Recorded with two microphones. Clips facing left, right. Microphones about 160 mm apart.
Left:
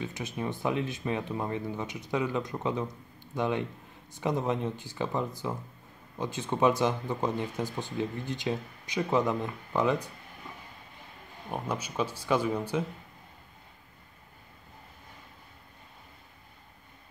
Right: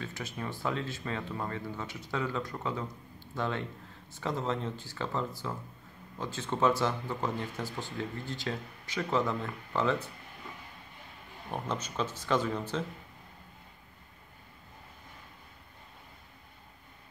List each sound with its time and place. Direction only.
0.0 s speech: 20° left (ahead or behind)
11.5 s speech: 10° left (ahead or behind)